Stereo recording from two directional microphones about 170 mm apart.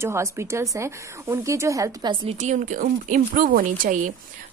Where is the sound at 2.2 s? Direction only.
45° right (ahead or behind).